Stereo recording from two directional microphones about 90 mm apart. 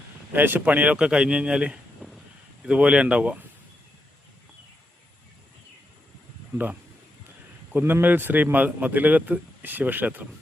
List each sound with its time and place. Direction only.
0.3 s speech: 20° right (ahead or behind)
7.7 s a man's voice: 20° right (ahead or behind)